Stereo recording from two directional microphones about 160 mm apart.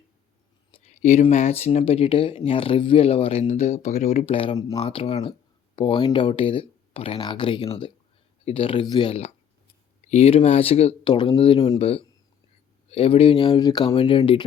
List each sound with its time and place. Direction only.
0.7 s speech: 45° left (ahead or behind)